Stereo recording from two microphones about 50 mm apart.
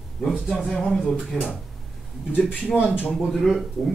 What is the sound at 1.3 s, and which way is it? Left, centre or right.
Speech, centre.